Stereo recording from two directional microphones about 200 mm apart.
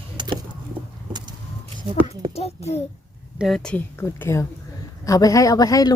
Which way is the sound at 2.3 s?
30° left (ahead or behind).